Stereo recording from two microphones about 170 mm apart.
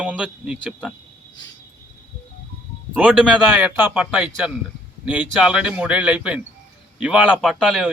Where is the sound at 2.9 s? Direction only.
5° right (ahead or behind).